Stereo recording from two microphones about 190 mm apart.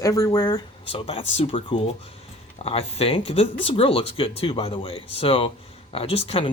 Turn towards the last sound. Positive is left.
turn(degrees=30)  # may be behind; listen again after turning